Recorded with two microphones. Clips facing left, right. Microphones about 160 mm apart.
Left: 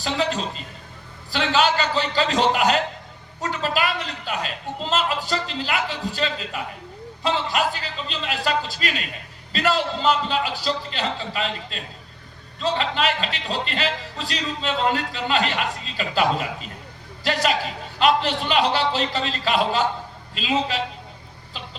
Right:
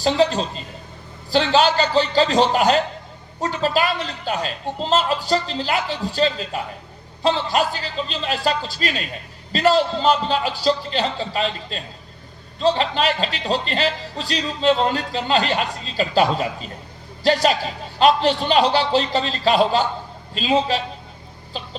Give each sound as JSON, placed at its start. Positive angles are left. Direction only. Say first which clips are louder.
{"t": 0.0, "sound": "a man's voice", "louder": "right 6 dB", "side_deg": -30}